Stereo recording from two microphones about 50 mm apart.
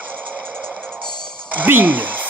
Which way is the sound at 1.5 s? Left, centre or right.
Right.